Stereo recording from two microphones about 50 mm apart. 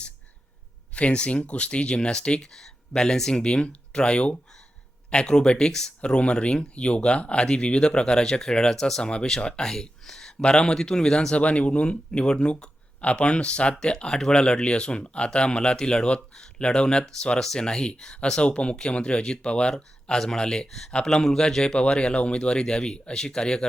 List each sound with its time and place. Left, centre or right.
0.9 s speech: left
11.3 s speech: left